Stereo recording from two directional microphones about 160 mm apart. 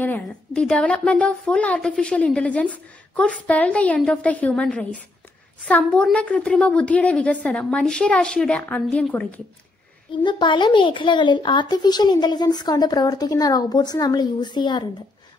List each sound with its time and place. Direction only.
0.0 s a woman's voice: 10° left (ahead or behind)
10.2 s speech: 30° left (ahead or behind)